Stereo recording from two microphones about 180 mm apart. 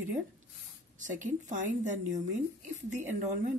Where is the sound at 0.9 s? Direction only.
45° right (ahead or behind).